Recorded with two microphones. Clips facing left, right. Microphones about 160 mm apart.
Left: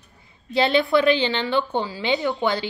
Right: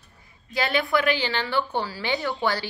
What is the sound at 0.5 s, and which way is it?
A woman's voice, 25° left (ahead or behind).